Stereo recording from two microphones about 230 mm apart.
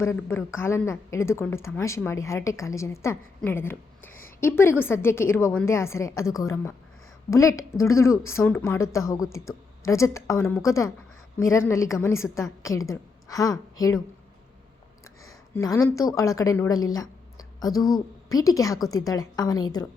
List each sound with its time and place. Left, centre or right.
0.2 s a woman's voice: centre
15.3 s a woman's voice: centre